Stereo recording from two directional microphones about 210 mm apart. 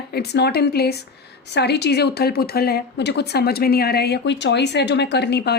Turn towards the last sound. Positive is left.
turn(degrees=50)  # may be behind; listen again after turning